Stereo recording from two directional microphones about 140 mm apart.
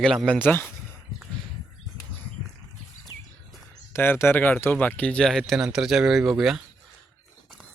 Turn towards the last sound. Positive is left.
turn(degrees=0)  # may be behind; listen again after turning